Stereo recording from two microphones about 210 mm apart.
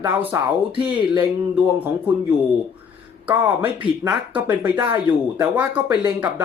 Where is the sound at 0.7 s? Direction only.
25° right (ahead or behind).